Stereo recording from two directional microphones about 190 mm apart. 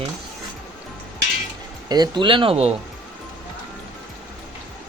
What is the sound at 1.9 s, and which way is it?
Speech, 20° right (ahead or behind).